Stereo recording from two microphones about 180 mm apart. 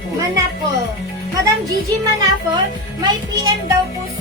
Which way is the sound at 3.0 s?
25° right (ahead or behind).